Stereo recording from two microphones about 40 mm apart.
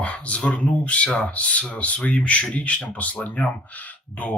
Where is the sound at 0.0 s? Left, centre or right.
Left.